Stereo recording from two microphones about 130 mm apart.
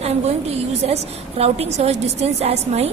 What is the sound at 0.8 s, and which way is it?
A woman's voice, 55° right (ahead or behind).